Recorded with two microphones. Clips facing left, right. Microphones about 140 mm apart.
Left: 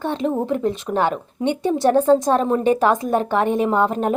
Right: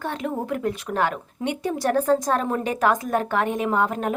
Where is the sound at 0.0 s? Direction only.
25° left (ahead or behind).